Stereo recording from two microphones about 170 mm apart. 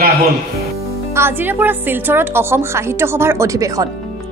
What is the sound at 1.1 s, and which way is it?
Speech, 10° right (ahead or behind).